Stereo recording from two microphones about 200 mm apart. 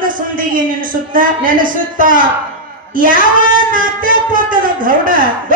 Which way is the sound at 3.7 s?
45° right (ahead or behind).